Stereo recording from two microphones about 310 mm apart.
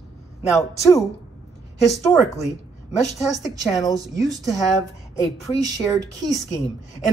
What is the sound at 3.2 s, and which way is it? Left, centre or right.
Speech, centre.